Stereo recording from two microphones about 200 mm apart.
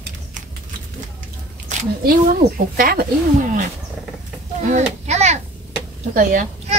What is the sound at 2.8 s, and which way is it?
Speech, 45° right (ahead or behind).